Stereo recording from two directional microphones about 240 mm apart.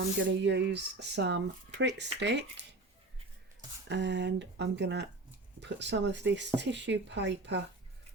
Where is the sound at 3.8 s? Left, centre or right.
Right.